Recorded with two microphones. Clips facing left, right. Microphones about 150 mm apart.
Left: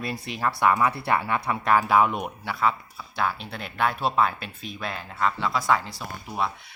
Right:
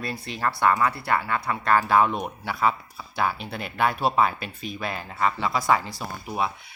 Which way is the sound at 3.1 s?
5° right (ahead or behind).